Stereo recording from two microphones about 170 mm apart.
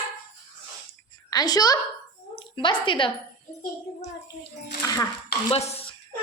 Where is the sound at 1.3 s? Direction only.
20° left (ahead or behind).